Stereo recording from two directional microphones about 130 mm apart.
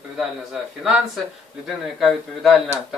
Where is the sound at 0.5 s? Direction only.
5° right (ahead or behind).